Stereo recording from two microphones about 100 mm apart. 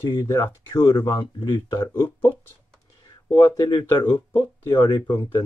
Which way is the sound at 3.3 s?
30° left (ahead or behind).